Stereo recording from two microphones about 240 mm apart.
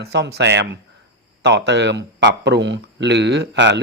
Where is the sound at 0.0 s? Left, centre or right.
Right.